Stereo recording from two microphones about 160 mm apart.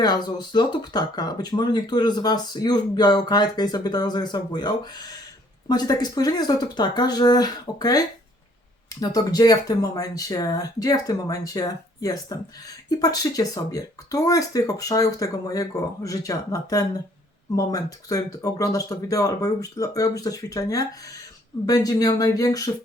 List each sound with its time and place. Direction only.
0.0 s speech: 25° left (ahead or behind)